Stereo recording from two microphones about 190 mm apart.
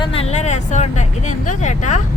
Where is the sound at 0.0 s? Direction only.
30° left (ahead or behind).